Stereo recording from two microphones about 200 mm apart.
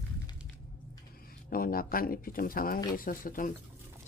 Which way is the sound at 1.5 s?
45° left (ahead or behind).